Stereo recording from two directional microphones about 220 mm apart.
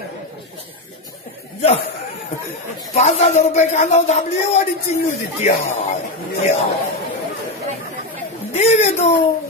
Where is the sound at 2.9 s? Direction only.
30° left (ahead or behind).